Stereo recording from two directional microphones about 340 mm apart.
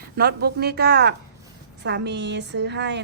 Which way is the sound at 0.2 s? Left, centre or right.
Right.